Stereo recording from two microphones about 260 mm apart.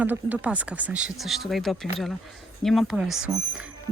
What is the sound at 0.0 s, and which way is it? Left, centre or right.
Speech, centre.